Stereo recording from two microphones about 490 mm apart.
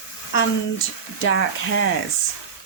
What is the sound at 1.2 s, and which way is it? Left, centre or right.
Speech, left.